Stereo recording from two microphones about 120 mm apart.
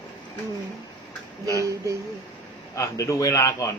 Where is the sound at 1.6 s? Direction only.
25° right (ahead or behind).